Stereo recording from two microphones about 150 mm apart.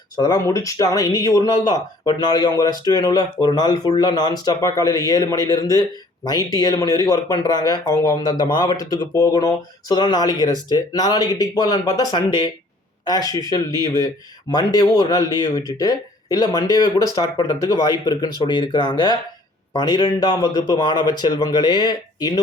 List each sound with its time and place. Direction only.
0.2 s speech: 25° left (ahead or behind)